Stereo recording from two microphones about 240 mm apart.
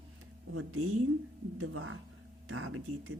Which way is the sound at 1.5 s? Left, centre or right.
Right.